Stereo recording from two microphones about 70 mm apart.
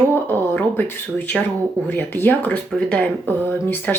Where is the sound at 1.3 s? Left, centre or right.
Centre.